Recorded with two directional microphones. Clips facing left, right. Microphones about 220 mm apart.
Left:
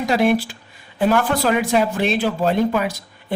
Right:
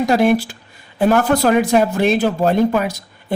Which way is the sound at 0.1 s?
45° right (ahead or behind).